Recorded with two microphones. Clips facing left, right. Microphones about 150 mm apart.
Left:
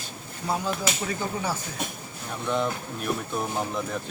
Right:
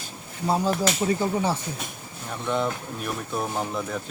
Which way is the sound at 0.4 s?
30° right (ahead or behind).